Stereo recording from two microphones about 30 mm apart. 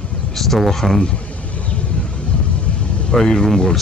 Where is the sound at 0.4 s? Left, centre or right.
Centre.